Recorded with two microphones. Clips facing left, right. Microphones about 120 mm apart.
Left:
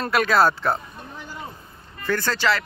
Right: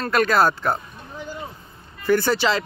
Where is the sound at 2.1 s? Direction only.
15° right (ahead or behind).